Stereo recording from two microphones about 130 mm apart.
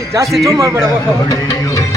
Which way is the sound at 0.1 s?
25° right (ahead or behind).